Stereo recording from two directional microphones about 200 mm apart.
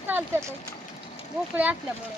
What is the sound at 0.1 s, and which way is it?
Speech, 10° right (ahead or behind).